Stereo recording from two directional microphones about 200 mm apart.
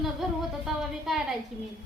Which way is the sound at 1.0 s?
Centre (ahead or behind).